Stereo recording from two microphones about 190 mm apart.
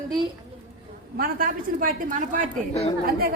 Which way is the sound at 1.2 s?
50° right (ahead or behind).